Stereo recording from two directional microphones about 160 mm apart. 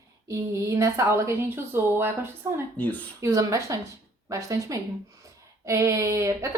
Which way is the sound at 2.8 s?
10° left (ahead or behind).